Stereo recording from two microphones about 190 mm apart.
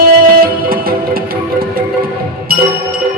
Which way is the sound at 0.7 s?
50° right (ahead or behind).